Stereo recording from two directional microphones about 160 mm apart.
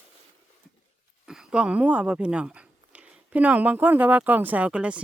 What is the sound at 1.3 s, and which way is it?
Speech, 5° right (ahead or behind).